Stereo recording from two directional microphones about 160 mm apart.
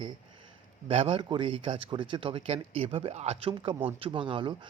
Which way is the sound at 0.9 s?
35° right (ahead or behind).